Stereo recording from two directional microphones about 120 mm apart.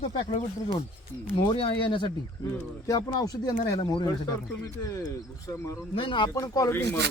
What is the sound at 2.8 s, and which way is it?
Speech, 30° left (ahead or behind).